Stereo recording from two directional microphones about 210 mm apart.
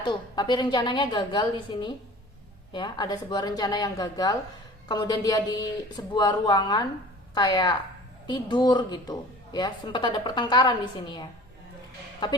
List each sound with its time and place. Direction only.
0.0 s a woman's voice: 20° left (ahead or behind)